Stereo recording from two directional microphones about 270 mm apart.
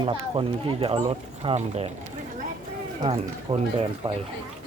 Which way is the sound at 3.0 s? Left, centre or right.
Centre.